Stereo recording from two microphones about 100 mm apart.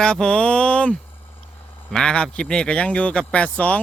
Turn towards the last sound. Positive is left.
turn(degrees=10)  # may be behind; listen again after turning